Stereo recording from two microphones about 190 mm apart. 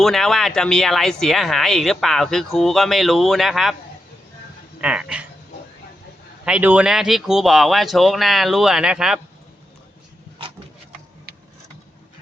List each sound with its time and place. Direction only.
0.0 s speech: centre (ahead or behind)
4.8 s speech: 5° right (ahead or behind)
6.4 s speech: 5° right (ahead or behind)